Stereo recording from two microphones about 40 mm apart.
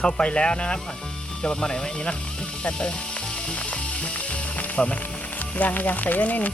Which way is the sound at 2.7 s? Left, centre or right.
Left.